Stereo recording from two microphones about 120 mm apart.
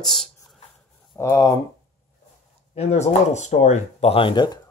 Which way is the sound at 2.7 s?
65° left (ahead or behind).